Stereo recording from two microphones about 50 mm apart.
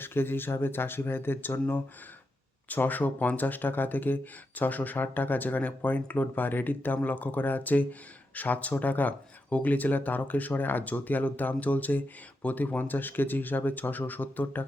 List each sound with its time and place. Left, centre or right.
0.0 s speech: left
2.6 s speech: left